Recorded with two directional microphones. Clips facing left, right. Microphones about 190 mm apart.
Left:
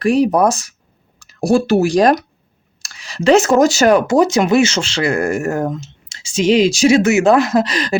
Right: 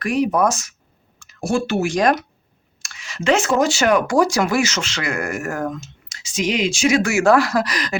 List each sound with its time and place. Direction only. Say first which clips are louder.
0.0 s speech: left 5 dB; 30° left (ahead or behind)
4.0 s speech: left 4 dB; 20° left (ahead or behind)